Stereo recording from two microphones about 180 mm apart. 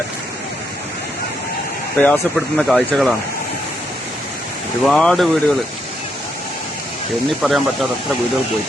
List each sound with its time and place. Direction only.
2.0 s speech: 5° left (ahead or behind)
4.8 s speech: 5° left (ahead or behind)
7.4 s speech: centre (ahead or behind)